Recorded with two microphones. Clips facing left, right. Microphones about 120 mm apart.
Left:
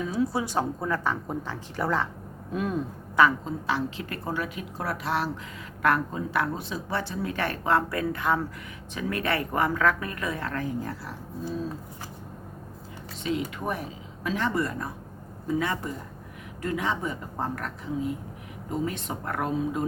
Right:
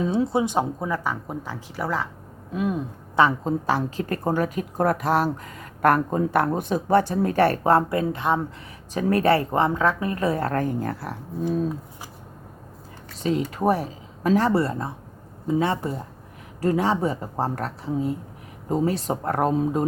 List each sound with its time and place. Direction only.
0.0 s speech: 25° right (ahead or behind); by 2.8 s 5° right (ahead or behind)
3.4 s a woman's voice: 45° right (ahead or behind)
7.9 s speech: 25° right (ahead or behind)
8.9 s a woman's voice: 40° right (ahead or behind); by 11.6 s 55° right (ahead or behind)
13.2 s a woman's voice: 40° right (ahead or behind)